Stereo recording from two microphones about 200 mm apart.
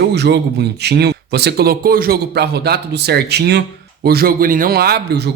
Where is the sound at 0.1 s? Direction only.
55° right (ahead or behind).